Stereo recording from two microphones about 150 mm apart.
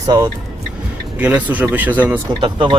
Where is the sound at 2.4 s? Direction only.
35° right (ahead or behind).